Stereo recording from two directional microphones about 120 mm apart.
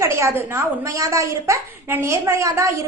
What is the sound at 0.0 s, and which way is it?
A woman's voice, 25° right (ahead or behind).